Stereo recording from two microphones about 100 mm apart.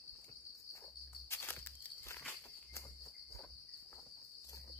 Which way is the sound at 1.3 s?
25° left (ahead or behind).